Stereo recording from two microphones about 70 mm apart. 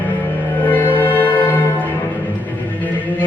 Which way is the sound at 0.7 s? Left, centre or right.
Left.